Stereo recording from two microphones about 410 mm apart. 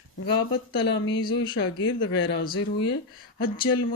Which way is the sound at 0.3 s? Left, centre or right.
Left.